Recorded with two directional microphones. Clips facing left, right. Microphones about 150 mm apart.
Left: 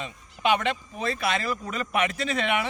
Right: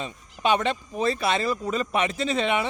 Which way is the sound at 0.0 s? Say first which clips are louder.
Right 1 dB; 35° right (ahead or behind).